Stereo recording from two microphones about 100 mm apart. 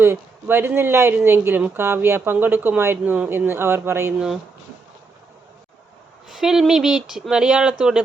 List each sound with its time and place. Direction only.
0.0 s speech: 25° right (ahead or behind)
6.2 s speech: 5° right (ahead or behind)